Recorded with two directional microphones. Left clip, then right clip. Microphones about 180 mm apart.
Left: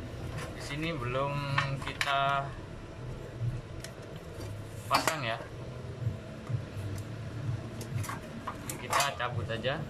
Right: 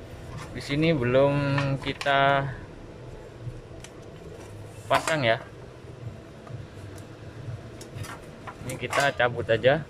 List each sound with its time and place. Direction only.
0.7 s speech: 50° right (ahead or behind)
4.8 s speech: 50° right (ahead or behind)
9.0 s speech: 50° right (ahead or behind)